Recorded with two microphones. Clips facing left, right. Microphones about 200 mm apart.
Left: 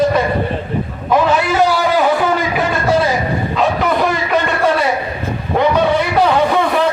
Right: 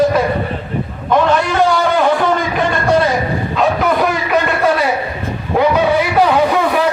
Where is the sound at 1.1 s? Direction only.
5° left (ahead or behind).